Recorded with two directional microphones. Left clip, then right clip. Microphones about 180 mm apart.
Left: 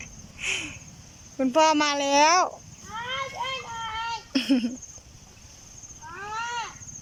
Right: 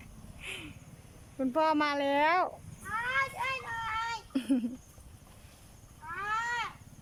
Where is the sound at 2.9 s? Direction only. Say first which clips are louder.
Even; 20° left (ahead or behind).